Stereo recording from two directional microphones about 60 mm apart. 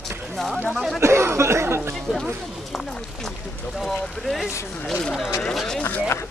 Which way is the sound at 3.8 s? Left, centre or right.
Centre.